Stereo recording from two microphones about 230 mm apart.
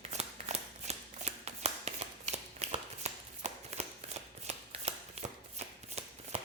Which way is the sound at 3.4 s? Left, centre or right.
Right.